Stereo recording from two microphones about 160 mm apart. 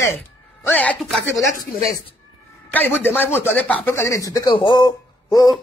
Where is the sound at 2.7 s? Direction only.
10° left (ahead or behind).